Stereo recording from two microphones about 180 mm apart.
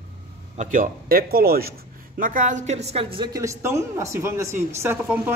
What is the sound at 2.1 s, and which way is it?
A woman's voice, 45° right (ahead or behind).